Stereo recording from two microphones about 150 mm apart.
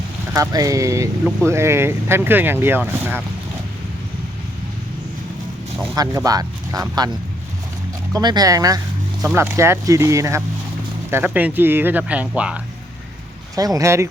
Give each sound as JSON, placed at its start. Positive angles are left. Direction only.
{"t": 0.3, "sound": "speech", "side_deg": -20}
{"t": 5.9, "sound": "speech", "side_deg": -20}
{"t": 8.1, "sound": "speech", "side_deg": -25}
{"t": 13.6, "sound": "speech", "side_deg": -25}